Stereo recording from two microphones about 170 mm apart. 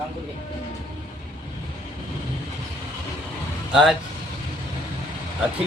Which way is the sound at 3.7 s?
Centre (ahead or behind).